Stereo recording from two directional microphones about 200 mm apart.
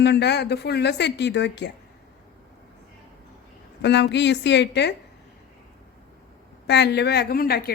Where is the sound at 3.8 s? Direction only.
60° left (ahead or behind).